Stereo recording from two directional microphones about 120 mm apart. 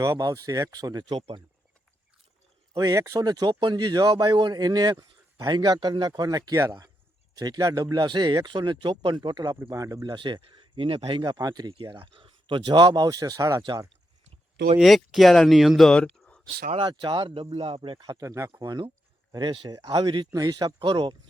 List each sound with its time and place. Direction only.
0.0 s a man's voice: 25° right (ahead or behind)
2.7 s a man's voice: 25° right (ahead or behind)
10.2 s speech: 45° right (ahead or behind)
11.2 s a man's voice: 30° right (ahead or behind)
14.8 s speech: centre (ahead or behind)
16.7 s a man's voice: 40° right (ahead or behind)